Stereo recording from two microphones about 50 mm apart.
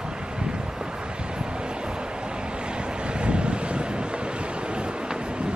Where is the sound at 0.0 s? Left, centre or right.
Centre.